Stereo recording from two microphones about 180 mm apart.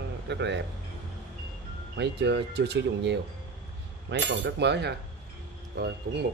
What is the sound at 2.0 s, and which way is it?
Speech, 70° right (ahead or behind).